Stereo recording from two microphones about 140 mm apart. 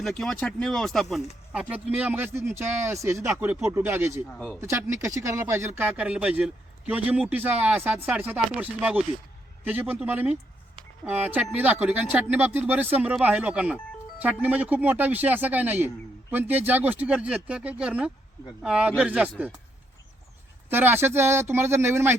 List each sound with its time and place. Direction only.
0.0 s speech: 5° left (ahead or behind)
1.5 s speech: 10° right (ahead or behind)
4.3 s speech: 10° left (ahead or behind)
4.6 s speech: 20° right (ahead or behind)
20.7 s speech: 15° right (ahead or behind)